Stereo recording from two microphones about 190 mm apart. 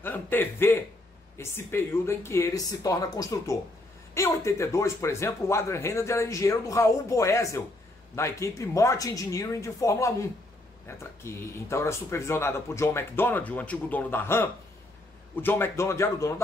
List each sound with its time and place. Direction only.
0.0 s speech: 10° left (ahead or behind)